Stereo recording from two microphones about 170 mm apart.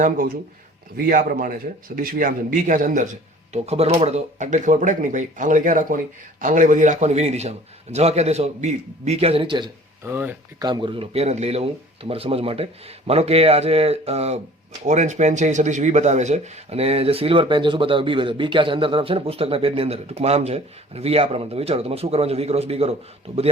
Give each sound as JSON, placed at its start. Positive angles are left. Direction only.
{"t": 0.9, "sound": "speech", "side_deg": -55}
{"t": 3.5, "sound": "speech", "side_deg": -40}
{"t": 10.0, "sound": "speech", "side_deg": -10}
{"t": 10.6, "sound": "speech", "side_deg": -25}